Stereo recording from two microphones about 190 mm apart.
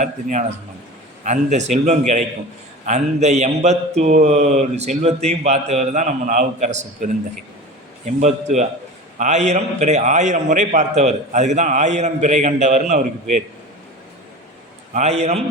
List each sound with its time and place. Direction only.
0.0 s a man's voice: 40° right (ahead or behind)
14.9 s a man's voice: 35° right (ahead or behind)